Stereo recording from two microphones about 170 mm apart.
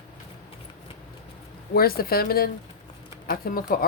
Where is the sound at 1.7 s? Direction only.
60° left (ahead or behind).